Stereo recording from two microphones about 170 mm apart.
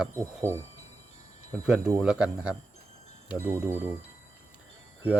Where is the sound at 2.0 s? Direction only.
5° right (ahead or behind).